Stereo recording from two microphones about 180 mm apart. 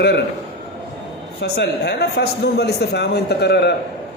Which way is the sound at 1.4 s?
70° left (ahead or behind).